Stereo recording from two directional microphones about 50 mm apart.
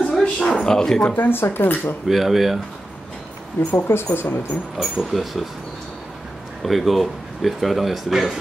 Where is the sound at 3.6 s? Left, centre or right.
Left.